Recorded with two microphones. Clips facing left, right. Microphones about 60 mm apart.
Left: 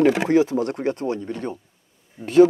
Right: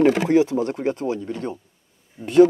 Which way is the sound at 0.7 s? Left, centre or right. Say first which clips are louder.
Even; centre.